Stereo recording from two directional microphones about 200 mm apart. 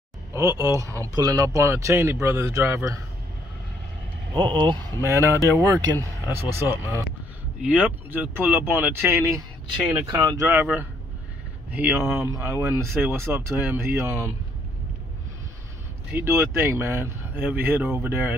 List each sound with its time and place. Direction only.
0.3 s speech: 15° right (ahead or behind)
4.4 s speech: 25° right (ahead or behind)
16.1 s speech: 10° right (ahead or behind)